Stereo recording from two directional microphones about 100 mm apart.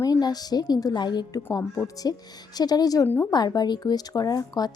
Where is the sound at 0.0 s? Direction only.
40° left (ahead or behind).